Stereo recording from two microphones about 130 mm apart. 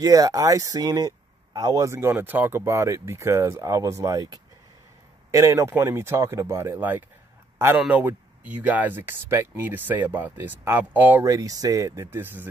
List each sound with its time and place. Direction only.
0.0 s a man's voice: 25° right (ahead or behind)
11.2 s speech: 25° right (ahead or behind)